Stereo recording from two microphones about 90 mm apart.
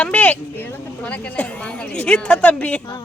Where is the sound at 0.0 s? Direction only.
15° left (ahead or behind).